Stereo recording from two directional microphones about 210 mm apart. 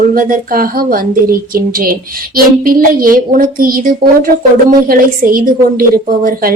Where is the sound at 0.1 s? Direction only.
40° right (ahead or behind).